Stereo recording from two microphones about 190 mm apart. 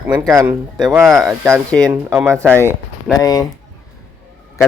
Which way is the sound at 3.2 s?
20° left (ahead or behind).